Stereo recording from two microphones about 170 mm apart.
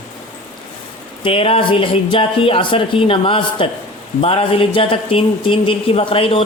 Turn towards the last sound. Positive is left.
turn(degrees=35)  # may be behind; listen again after turning